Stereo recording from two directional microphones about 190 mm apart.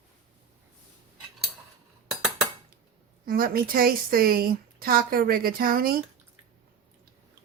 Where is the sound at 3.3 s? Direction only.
50° right (ahead or behind).